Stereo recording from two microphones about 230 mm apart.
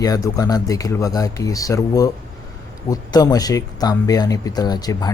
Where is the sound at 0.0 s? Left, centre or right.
Centre.